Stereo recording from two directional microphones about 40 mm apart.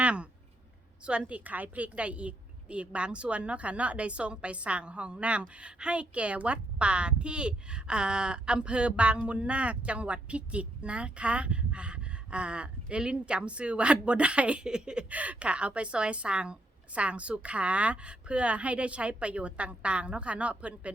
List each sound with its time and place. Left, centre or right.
0.0 s a sound: right
1.0 s a woman's voice: right
1.5 s a woman's voice: right
14.7 s a woman's voice: right
15.1 s a woman's voice: right